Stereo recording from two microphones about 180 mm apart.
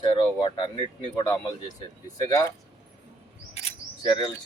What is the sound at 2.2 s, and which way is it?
Speech, 20° left (ahead or behind).